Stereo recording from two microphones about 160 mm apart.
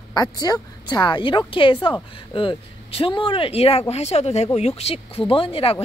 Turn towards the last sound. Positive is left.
turn(degrees=35)  # may be behind; listen again after turning